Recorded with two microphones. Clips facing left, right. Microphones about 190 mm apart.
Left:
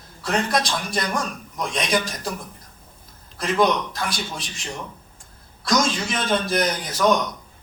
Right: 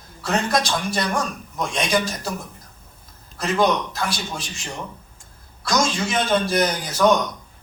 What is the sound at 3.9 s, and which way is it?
Speech, 30° right (ahead or behind).